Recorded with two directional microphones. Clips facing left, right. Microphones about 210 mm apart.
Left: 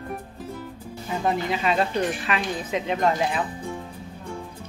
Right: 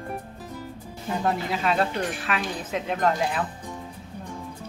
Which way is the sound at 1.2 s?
Centre (ahead or behind).